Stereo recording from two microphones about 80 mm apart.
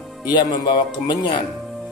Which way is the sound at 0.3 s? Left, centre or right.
Left.